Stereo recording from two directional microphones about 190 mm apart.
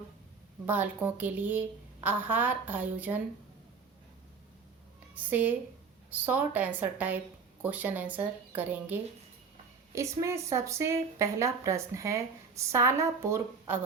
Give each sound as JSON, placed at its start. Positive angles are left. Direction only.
{"t": 0.6, "sound": "a woman's voice", "side_deg": -10}
{"t": 5.1, "sound": "a woman's voice", "side_deg": -10}